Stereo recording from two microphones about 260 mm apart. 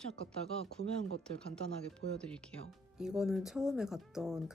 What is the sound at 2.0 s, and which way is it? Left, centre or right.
Speech, right.